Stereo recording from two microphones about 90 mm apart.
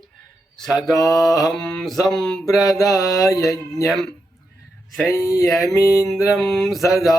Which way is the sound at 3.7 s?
5° left (ahead or behind).